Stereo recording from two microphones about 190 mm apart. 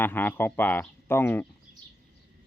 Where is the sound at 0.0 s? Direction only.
10° left (ahead or behind).